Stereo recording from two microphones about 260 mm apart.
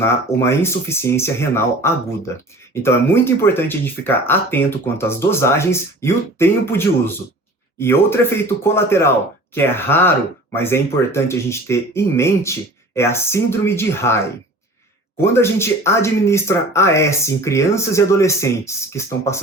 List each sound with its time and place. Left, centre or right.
0.0 s speech: centre
15.2 s speech: centre